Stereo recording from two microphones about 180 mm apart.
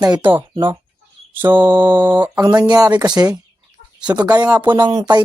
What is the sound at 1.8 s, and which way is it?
Speech, 10° right (ahead or behind).